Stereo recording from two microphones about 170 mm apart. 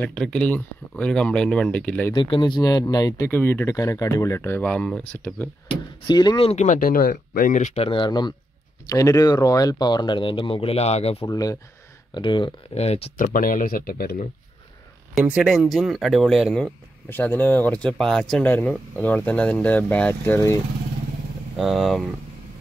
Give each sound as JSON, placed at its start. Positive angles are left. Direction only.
{"t": 0.0, "sound": "speech", "side_deg": 5}
{"t": 2.1, "sound": "speech", "side_deg": 30}
{"t": 5.7, "sound": "speech", "side_deg": 25}
{"t": 6.4, "sound": "speech", "side_deg": 40}
{"t": 11.2, "sound": "speech", "side_deg": 20}
{"t": 13.2, "sound": "speech", "side_deg": 55}
{"t": 15.1, "sound": "speech", "side_deg": -5}
{"t": 17.1, "sound": "speech", "side_deg": 10}
{"t": 21.5, "sound": "speech", "side_deg": 0}